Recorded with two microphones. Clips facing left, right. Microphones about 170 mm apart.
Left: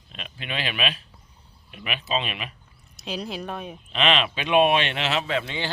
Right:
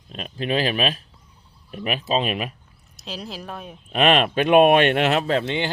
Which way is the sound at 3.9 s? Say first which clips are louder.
Right 6 dB; 50° right (ahead or behind).